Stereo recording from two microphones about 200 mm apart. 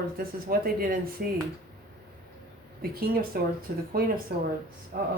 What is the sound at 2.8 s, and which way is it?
A woman's voice, 50° right (ahead or behind).